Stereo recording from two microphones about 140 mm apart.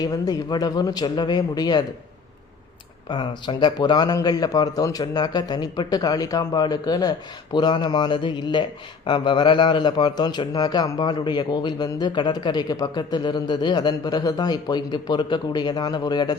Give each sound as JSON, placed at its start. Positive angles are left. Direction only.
{"t": 0.0, "sound": "a man's voice", "side_deg": 25}
{"t": 3.1, "sound": "a man's voice", "side_deg": 35}